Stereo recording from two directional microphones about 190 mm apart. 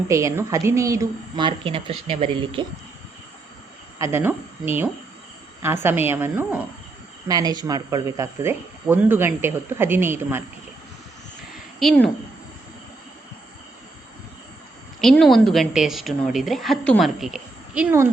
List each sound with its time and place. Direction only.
0.1 s speech: 15° right (ahead or behind)
3.9 s speech: 15° right (ahead or behind)
11.5 s a sound: centre (ahead or behind)
15.0 s a woman's voice: centre (ahead or behind)